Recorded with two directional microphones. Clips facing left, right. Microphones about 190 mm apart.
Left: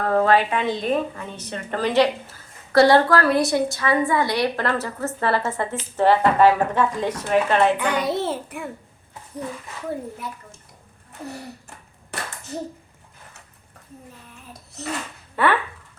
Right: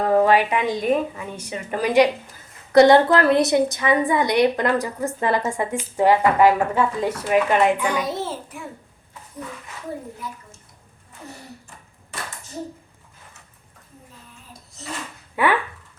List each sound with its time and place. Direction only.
0.0 s a woman's voice: 15° right (ahead or behind)
7.8 s a child's voice: 65° left (ahead or behind)
14.8 s a sound: 65° left (ahead or behind)
15.4 s a woman's voice: 10° right (ahead or behind)